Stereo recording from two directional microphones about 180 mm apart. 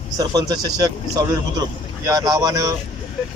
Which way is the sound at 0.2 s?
20° right (ahead or behind).